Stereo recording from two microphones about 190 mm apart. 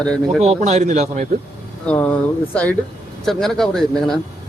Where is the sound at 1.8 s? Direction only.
5° left (ahead or behind).